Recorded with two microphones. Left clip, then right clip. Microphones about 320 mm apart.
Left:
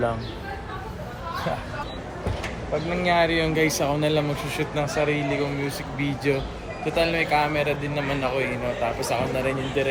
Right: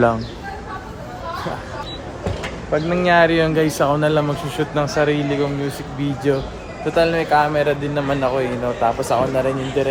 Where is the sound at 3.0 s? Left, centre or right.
Centre.